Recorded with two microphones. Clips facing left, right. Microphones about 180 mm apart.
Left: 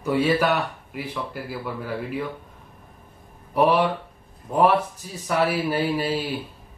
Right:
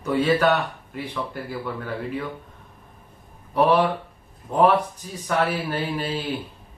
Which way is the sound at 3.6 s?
Centre (ahead or behind).